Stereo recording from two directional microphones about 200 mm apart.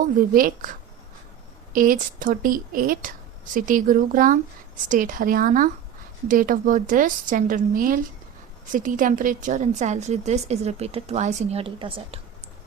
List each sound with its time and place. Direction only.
0.0 s a woman's voice: 45° right (ahead or behind); by 12.2 s 25° right (ahead or behind)